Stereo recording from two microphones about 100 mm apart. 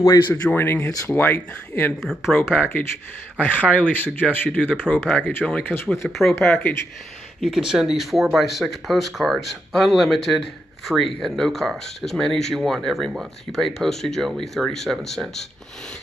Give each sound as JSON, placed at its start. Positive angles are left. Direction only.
{"t": 0.3, "sound": "speech", "side_deg": 20}
{"t": 2.0, "sound": "speech", "side_deg": 0}
{"t": 2.5, "sound": "speech", "side_deg": 20}
{"t": 4.9, "sound": "speech", "side_deg": 0}
{"t": 5.5, "sound": "speech", "side_deg": 15}
{"t": 5.9, "sound": "speech", "side_deg": 5}
{"t": 6.3, "sound": "speech", "side_deg": 20}
{"t": 7.3, "sound": "speech", "side_deg": -5}